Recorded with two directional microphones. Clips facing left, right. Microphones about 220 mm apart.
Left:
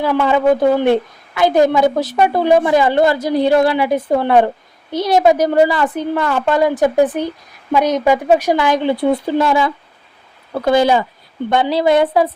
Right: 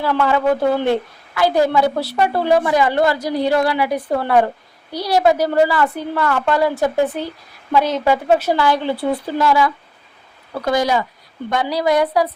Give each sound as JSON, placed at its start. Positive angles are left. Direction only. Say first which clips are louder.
{"t": 0.0, "sound": "a woman's voice", "louder": "left 3 dB", "side_deg": 15}